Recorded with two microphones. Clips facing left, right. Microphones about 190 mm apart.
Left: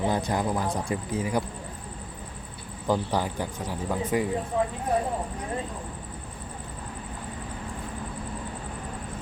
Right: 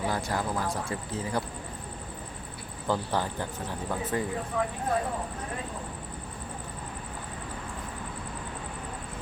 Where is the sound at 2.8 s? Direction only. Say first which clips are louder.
Left 3 dB; 15° left (ahead or behind).